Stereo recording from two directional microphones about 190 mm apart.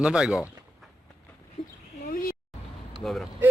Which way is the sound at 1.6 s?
30° left (ahead or behind).